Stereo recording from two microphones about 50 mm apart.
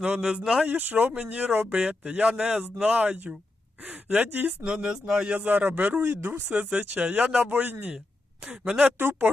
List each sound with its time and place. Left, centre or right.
0.0 s speech: centre
0.6 s speech: right
4.6 s speech: centre
5.4 s speech: right
6.0 s speech: right
6.5 s speech: right
8.6 s speech: centre